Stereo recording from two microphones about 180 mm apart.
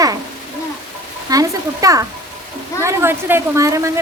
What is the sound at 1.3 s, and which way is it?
A woman's voice, 20° right (ahead or behind).